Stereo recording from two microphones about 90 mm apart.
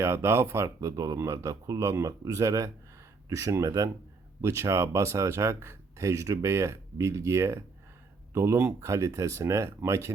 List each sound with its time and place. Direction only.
0.0 s speech: 30° right (ahead or behind)